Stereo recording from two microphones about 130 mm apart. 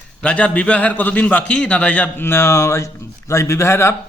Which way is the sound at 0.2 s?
10° left (ahead or behind).